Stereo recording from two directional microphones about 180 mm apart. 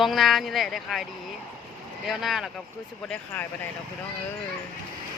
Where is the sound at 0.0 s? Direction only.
Centre (ahead or behind).